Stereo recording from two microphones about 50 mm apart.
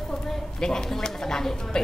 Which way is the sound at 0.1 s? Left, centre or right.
Centre.